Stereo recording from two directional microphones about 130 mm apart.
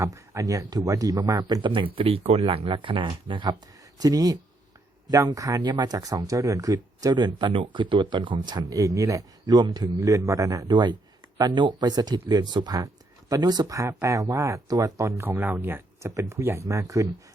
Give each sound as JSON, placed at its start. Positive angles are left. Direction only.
{"t": 0.0, "sound": "speech", "side_deg": -25}